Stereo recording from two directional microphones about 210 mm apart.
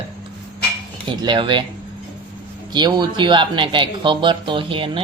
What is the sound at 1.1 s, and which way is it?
Speech, 20° right (ahead or behind).